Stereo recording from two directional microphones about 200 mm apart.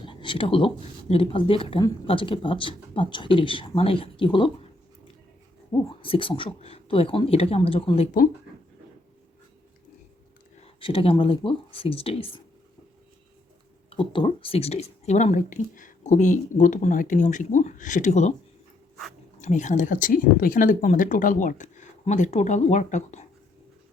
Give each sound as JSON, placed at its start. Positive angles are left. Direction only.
{"t": 0.0, "sound": "speech", "side_deg": 25}
{"t": 5.7, "sound": "speech", "side_deg": 20}
{"t": 10.8, "sound": "speech", "side_deg": 25}
{"t": 13.9, "sound": "speech", "side_deg": 25}
{"t": 19.4, "sound": "speech", "side_deg": 35}